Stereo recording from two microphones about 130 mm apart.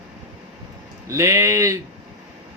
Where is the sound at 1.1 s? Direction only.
25° right (ahead or behind).